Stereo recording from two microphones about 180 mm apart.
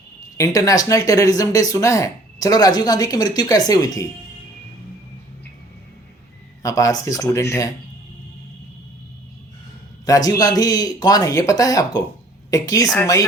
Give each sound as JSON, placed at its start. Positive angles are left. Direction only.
{"t": 0.3, "sound": "speech", "side_deg": 20}
{"t": 6.6, "sound": "speech", "side_deg": 20}
{"t": 10.1, "sound": "speech", "side_deg": 20}